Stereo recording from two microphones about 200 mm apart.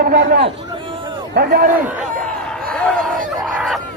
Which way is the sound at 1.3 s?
50° right (ahead or behind).